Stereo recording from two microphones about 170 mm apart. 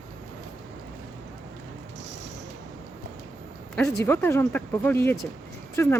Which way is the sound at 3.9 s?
15° left (ahead or behind).